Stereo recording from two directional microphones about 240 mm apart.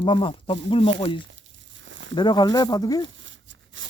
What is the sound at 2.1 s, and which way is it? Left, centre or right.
Speech, centre.